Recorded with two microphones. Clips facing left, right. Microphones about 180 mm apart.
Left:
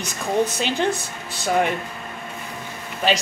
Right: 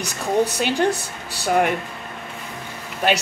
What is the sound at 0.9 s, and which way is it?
Speech, 70° right (ahead or behind).